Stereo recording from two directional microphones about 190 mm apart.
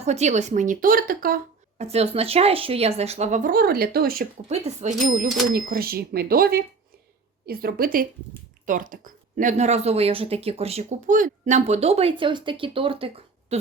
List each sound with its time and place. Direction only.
0.0 s speech: 35° right (ahead or behind)
1.8 s speech: 35° right (ahead or behind); by 4.3 s 50° right (ahead or behind)
4.4 s speech: 35° right (ahead or behind)
5.5 s speech: 50° right (ahead or behind); by 13.6 s 30° right (ahead or behind)